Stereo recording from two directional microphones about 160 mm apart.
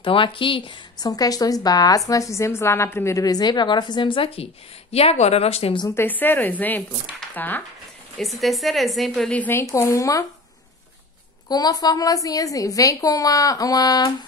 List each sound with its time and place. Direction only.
0.0 s speech: 35° left (ahead or behind)
5.9 s a woman's voice: 15° left (ahead or behind)
8.2 s speech: centre (ahead or behind); by 10.2 s 20° left (ahead or behind)
11.4 s speech: 25° left (ahead or behind)